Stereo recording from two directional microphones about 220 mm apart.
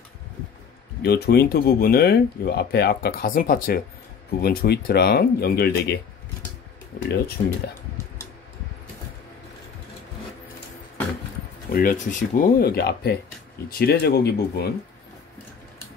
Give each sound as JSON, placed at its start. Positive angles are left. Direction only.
{"t": 1.0, "sound": "speech", "side_deg": 45}
{"t": 11.7, "sound": "speech", "side_deg": 35}